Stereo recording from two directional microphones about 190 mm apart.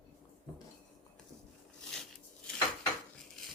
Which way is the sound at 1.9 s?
5° left (ahead or behind).